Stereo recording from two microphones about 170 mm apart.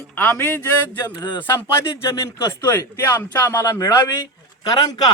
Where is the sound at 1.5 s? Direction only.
15° left (ahead or behind).